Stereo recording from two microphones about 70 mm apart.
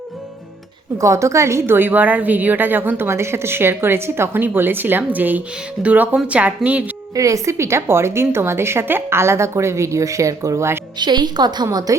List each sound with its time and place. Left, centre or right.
0.9 s a woman's voice: right; by 6.9 s centre
7.1 s a woman's voice: right
10.9 s a woman's voice: right